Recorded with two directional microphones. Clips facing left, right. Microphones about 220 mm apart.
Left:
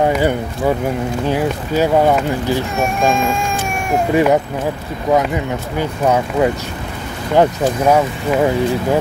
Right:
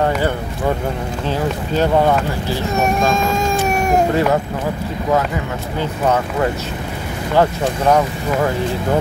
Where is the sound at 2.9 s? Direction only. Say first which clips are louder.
Even; 40° right (ahead or behind).